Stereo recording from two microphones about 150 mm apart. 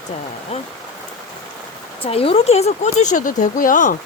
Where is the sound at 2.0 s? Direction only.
40° left (ahead or behind).